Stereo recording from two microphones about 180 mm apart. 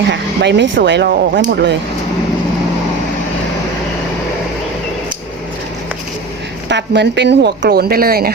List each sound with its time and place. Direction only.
0.1 s speech: 75° right (ahead or behind)
6.7 s speech: 75° right (ahead or behind); by 8.3 s 55° right (ahead or behind)